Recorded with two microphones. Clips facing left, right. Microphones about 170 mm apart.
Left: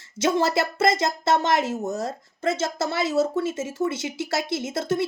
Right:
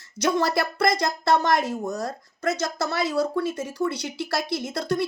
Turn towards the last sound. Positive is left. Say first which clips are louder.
# left 1 dB
turn(degrees=20)  # may be behind; listen again after turning